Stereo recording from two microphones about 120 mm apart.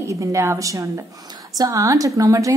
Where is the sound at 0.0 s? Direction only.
25° right (ahead or behind).